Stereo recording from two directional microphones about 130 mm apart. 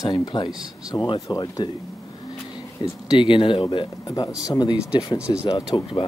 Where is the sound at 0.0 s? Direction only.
30° left (ahead or behind).